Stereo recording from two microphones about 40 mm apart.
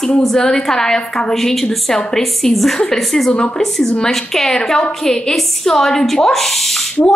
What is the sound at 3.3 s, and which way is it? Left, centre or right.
A woman's voice, centre.